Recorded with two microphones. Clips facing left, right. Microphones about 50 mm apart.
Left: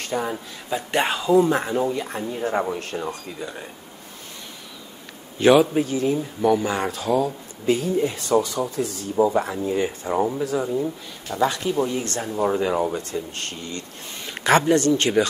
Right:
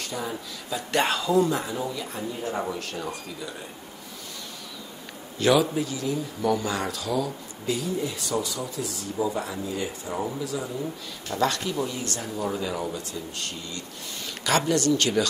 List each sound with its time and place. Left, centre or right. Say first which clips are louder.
0.0 s speech: left 6 dB; left
0.7 s speech: left 3 dB; left
1.0 s speech: left 5 dB; centre
1.5 s speech: left 6 dB; left
5.4 s speech: left 6 dB; left
6.4 s speech: left 5 dB; left
11.3 s a man's voice: left 3 dB; centre
11.6 s speech: left 6 dB; left